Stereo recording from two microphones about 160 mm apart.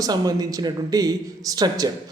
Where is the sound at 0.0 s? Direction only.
25° right (ahead or behind).